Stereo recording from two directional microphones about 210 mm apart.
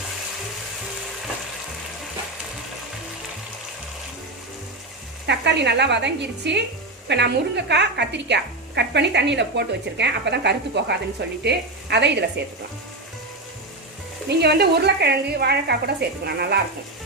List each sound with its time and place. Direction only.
5.2 s a woman's voice: 55° right (ahead or behind)
14.3 s a woman's voice: 50° right (ahead or behind)